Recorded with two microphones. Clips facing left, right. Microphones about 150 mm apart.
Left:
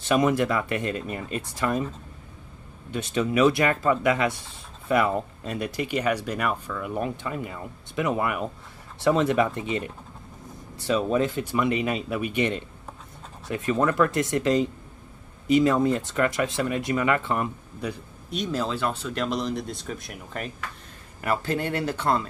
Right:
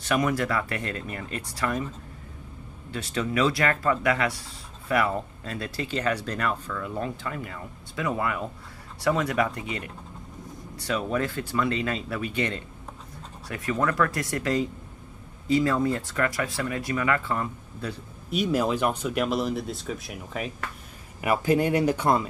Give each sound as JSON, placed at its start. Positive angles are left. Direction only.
{"t": 0.0, "sound": "speech", "side_deg": 20}
{"t": 2.9, "sound": "speech", "side_deg": 20}
{"t": 18.3, "sound": "speech", "side_deg": -10}